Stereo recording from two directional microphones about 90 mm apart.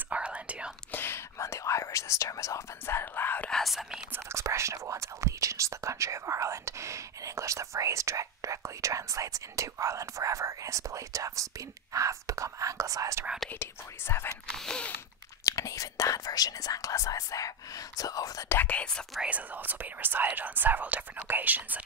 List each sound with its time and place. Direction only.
0.1 s whispering: 15° right (ahead or behind)
0.9 s speech: 25° left (ahead or behind)
3.4 s speech: 5° left (ahead or behind)
4.1 s speech: 30° right (ahead or behind)
13.5 s speech: 25° left (ahead or behind)
14.5 s speech: 5° left (ahead or behind)
15.4 s speech: 35° left (ahead or behind)
18.5 s speech: 20° left (ahead or behind)
19.2 s speech: 20° right (ahead or behind)